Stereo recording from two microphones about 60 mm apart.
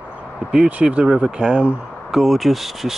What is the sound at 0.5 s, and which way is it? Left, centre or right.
Speech, centre.